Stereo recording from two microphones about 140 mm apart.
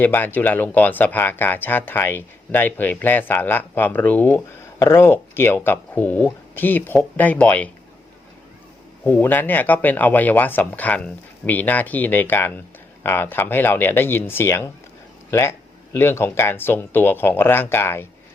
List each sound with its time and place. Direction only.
0.0 s speech: 15° left (ahead or behind)
9.0 s speech: 15° left (ahead or behind)